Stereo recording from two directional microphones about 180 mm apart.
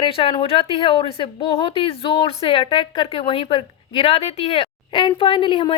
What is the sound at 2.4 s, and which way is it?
A woman's voice, 30° left (ahead or behind).